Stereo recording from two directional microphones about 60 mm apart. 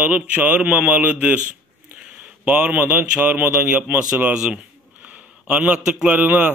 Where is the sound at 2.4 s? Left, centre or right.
Right.